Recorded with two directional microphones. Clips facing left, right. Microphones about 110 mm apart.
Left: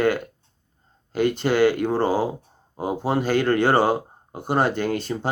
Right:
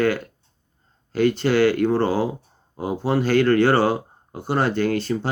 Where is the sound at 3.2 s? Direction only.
15° left (ahead or behind).